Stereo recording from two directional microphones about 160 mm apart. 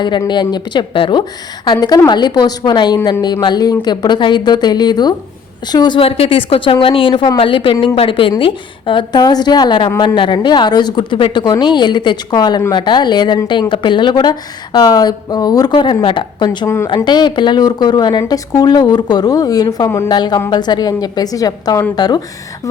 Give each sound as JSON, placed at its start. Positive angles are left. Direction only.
{"t": 0.0, "sound": "a woman's voice", "side_deg": 30}